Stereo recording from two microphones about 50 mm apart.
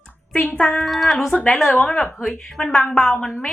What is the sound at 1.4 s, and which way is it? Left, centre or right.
Speech, centre.